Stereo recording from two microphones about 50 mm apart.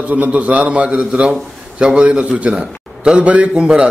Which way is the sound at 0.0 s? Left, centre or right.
Right.